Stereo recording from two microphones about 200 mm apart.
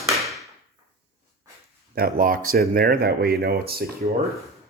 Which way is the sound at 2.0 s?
45° right (ahead or behind).